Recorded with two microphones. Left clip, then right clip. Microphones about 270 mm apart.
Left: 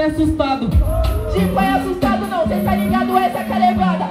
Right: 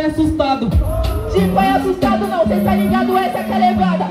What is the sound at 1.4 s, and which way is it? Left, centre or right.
Music, left.